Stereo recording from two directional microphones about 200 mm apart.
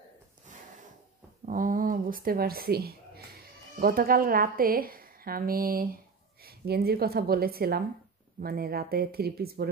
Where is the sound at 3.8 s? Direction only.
50° right (ahead or behind).